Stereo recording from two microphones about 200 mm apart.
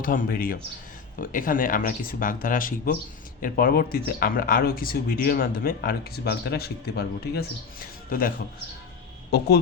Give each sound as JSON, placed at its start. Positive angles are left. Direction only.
{"t": 0.0, "sound": "speech", "side_deg": 45}